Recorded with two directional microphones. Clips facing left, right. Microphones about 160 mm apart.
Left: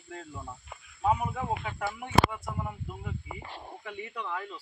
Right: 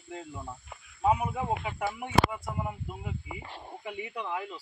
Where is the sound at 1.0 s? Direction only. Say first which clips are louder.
Right 1 dB; 10° right (ahead or behind).